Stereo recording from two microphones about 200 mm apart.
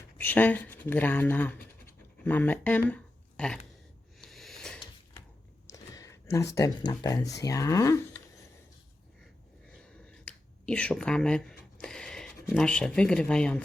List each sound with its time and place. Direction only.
0.2 s speech: 10° left (ahead or behind)
4.2 s a sound: centre (ahead or behind)
5.6 s speech: 15° left (ahead or behind)
9.8 s finger snapping: 5° left (ahead or behind)
11.8 s speech: 5° left (ahead or behind)